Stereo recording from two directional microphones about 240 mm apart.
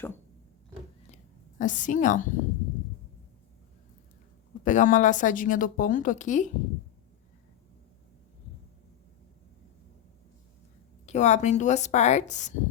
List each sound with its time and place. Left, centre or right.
1.1 s a sound: left
4.6 s speech: left
11.0 s speech: left